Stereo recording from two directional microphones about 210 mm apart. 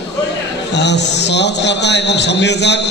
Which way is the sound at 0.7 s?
55° left (ahead or behind).